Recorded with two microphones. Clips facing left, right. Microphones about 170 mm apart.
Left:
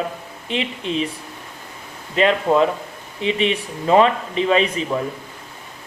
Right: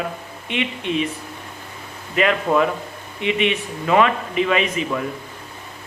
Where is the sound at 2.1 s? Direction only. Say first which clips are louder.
Left 2 dB; 30° left (ahead or behind).